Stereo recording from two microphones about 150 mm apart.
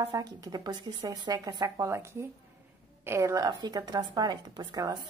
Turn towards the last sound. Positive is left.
turn(degrees=-30)  # may be behind; listen again after turning